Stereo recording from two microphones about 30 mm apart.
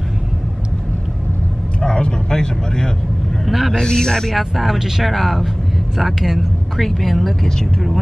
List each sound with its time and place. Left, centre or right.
1.8 s vehicle: left
3.4 s speech: centre
3.7 s a man's voice: left
4.4 s speech: centre
6.8 s speech: centre